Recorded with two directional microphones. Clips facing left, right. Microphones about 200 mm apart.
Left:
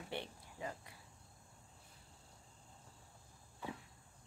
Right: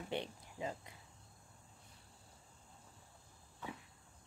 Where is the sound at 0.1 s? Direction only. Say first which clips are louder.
Right 4 dB; 20° right (ahead or behind).